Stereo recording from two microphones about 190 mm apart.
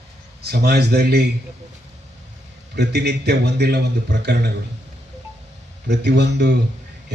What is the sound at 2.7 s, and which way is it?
A man's voice, 60° right (ahead or behind).